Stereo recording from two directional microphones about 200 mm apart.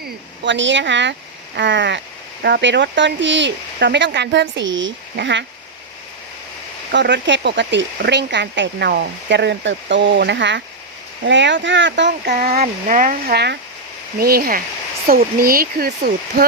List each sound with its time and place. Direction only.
0.4 s speech: 65° right (ahead or behind)
6.9 s speech: 60° right (ahead or behind)
12.4 s speech: 35° right (ahead or behind)